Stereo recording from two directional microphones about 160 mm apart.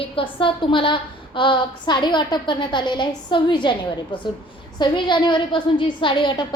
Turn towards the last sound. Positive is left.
turn(degrees=30)  # may be behind; listen again after turning